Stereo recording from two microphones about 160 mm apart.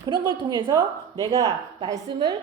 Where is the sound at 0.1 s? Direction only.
30° right (ahead or behind).